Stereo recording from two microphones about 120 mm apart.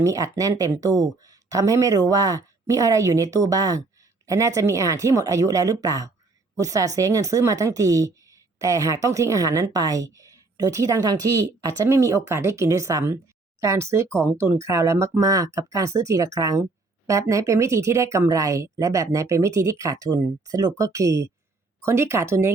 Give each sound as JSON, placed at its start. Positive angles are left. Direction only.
{"t": 0.0, "sound": "a woman's voice", "side_deg": -30}